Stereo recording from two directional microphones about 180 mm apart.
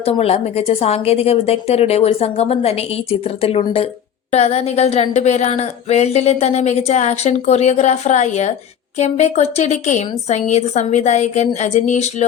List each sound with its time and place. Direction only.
0.0 s speech: 35° left (ahead or behind)